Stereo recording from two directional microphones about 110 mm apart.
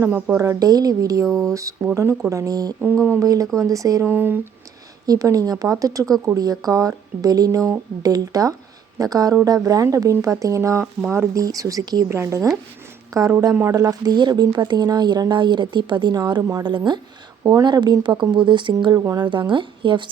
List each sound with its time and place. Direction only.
0.0 s speech: 20° right (ahead or behind)
0.3 s speech: 35° right (ahead or behind)
4.0 s speech: 20° right (ahead or behind)
5.0 s speech: 35° right (ahead or behind)
12.0 s speech: 20° right (ahead or behind)
16.6 s speech: 45° right (ahead or behind)
18.9 s speech: 30° right (ahead or behind)
19.2 s speech: 45° right (ahead or behind)